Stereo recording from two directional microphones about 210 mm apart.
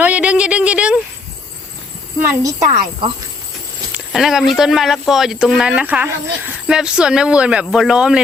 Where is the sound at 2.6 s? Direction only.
25° right (ahead or behind).